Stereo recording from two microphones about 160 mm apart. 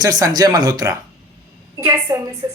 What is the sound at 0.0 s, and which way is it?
A woman's voice, 20° right (ahead or behind).